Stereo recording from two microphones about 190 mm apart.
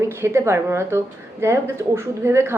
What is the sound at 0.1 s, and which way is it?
Speech, 15° right (ahead or behind).